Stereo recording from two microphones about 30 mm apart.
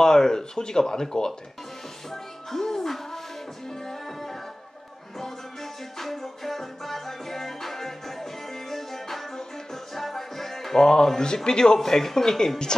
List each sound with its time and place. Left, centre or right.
0.0 s speech: centre
2.0 s music: centre
9.9 s speech: centre